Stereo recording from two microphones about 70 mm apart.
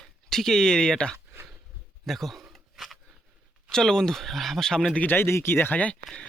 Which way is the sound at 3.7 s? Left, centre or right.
Centre.